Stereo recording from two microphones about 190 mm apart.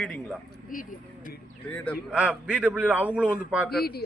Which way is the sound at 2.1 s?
5° right (ahead or behind).